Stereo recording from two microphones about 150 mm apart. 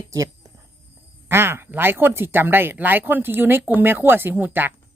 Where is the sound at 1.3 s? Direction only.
15° right (ahead or behind).